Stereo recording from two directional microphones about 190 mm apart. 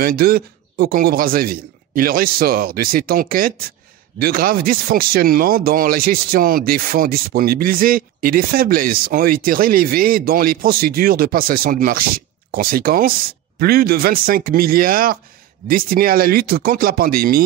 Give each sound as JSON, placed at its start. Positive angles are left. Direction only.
{"t": 0.0, "sound": "speech", "side_deg": -50}